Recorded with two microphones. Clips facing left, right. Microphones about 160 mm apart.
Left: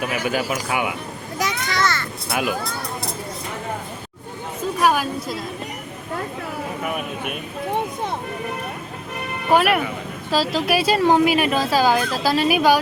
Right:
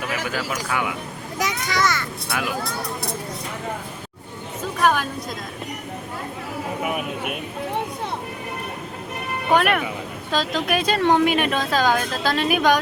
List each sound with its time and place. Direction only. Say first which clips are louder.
0.3 s speech: left 4 dB; 15° left (ahead or behind)
1.4 s a child's voice: even; 15° right (ahead or behind)
2.3 s speech: left 4 dB; 20° left (ahead or behind)
4.8 s a woman's voice: left 1 dB; 10° left (ahead or behind)
9.5 s speech: left 2 dB; 5° left (ahead or behind)